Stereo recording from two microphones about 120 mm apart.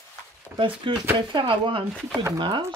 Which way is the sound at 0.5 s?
20° right (ahead or behind).